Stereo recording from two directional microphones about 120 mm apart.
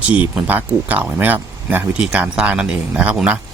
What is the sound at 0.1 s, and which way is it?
Speech, 10° right (ahead or behind).